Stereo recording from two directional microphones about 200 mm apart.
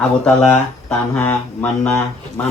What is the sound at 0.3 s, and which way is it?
Speech, 5° left (ahead or behind).